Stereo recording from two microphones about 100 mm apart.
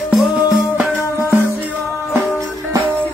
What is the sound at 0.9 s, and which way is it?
Music, 25° left (ahead or behind).